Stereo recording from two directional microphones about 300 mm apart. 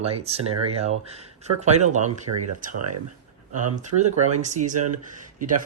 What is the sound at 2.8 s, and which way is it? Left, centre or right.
Speech, right.